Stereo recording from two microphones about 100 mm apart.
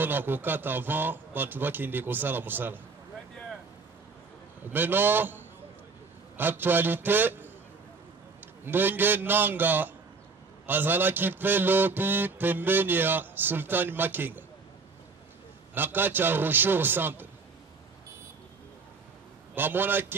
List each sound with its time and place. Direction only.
0.0 s a man's voice: 20° right (ahead or behind)
4.6 s a man's voice: 20° right (ahead or behind)
8.6 s a man's voice: 20° right (ahead or behind)
15.7 s a man's voice: 20° right (ahead or behind)
19.5 s a man's voice: 20° right (ahead or behind)